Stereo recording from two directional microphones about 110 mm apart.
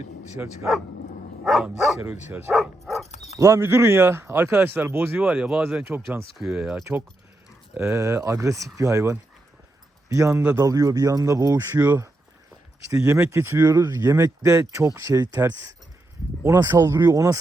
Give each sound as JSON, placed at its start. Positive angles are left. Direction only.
{"t": 1.5, "sound": "speech", "side_deg": 0}
{"t": 2.5, "sound": "bow-wow", "side_deg": 0}
{"t": 3.3, "sound": "speech", "side_deg": -25}
{"t": 5.2, "sound": "speech", "side_deg": -5}
{"t": 7.9, "sound": "speech", "side_deg": -30}
{"t": 13.1, "sound": "speech", "side_deg": -25}
{"t": 13.6, "sound": "speech", "side_deg": -35}
{"t": 16.6, "sound": "speech", "side_deg": -35}
{"t": 16.9, "sound": "speech", "side_deg": -20}